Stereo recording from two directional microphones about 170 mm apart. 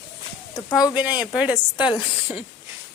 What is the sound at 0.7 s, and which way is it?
Speech, 5° right (ahead or behind).